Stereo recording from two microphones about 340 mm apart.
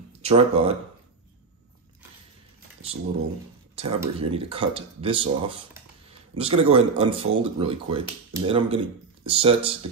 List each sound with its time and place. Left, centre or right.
0.2 s speech: centre
3.7 s speech: centre